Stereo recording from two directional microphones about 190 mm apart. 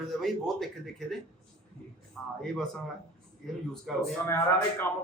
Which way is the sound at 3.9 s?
Centre (ahead or behind).